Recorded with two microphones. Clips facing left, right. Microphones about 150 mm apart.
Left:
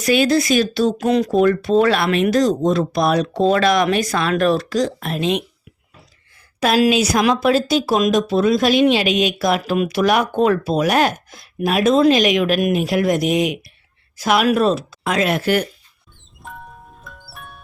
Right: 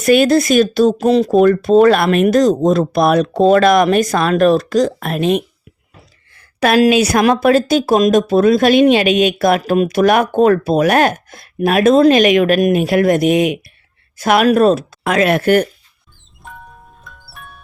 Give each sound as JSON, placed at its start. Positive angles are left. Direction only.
{"t": 0.0, "sound": "a woman's voice", "side_deg": -50}
{"t": 0.9, "sound": "a woman's voice", "side_deg": -35}
{"t": 16.4, "sound": "music", "side_deg": 0}